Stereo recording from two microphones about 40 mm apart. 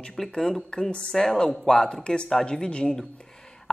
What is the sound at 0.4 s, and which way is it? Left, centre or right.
Speech, centre.